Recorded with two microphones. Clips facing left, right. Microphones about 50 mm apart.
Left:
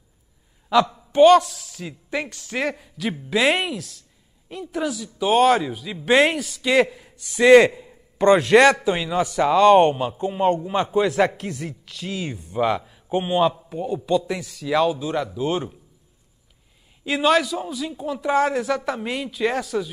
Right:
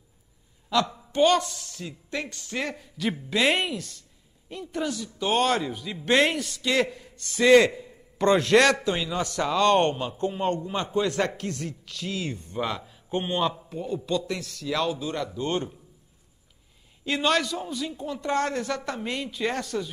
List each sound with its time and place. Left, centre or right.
1.1 s speech: centre
1.4 s a man's voice: centre; by 12.4 s left
12.4 s a man's voice: centre
17.0 s a man's voice: centre